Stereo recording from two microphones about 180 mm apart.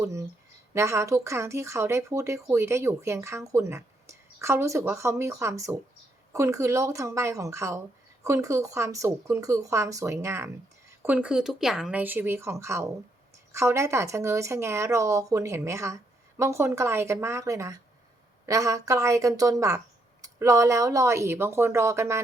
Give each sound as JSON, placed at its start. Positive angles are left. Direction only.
{"t": 0.0, "sound": "speech", "side_deg": -15}